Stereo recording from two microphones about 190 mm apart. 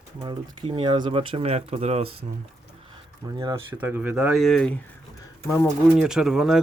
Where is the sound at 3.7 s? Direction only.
10° right (ahead or behind); by 5.7 s 15° left (ahead or behind).